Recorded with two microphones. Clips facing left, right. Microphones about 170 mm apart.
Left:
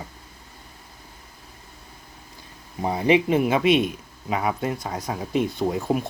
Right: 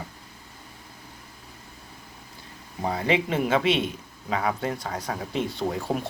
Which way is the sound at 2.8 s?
20° left (ahead or behind).